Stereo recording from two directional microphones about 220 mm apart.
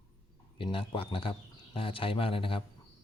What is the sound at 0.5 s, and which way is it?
Speech, 25° left (ahead or behind).